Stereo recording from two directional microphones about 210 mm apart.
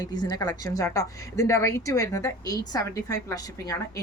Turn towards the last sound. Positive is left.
turn(degrees=15)  # may be behind; listen again after turning